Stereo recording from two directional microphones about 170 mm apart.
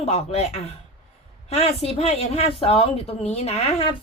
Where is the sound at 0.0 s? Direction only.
40° left (ahead or behind).